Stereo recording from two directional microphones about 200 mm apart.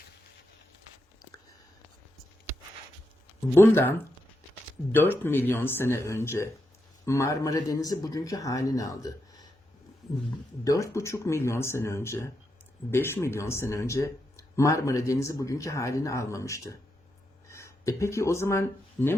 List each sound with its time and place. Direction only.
3.5 s speech: 10° left (ahead or behind)
4.9 s speech: 10° left (ahead or behind)
10.6 s speech: 15° left (ahead or behind)